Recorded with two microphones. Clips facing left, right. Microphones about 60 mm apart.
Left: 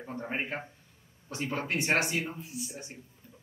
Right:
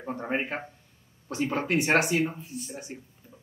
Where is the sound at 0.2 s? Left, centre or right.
Right.